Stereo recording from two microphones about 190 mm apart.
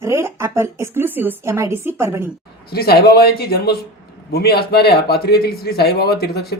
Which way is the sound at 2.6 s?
55° left (ahead or behind).